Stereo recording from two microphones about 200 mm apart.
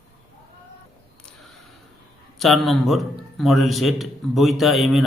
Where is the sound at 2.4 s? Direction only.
Centre (ahead or behind).